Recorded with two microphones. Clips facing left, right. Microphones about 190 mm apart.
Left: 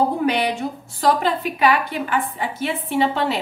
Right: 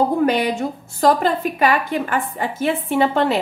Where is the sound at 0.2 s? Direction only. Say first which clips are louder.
Right 3 dB; 45° right (ahead or behind).